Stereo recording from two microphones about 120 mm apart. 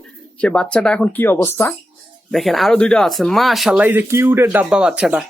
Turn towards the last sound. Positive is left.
turn(degrees=-5)  # may be behind; listen again after turning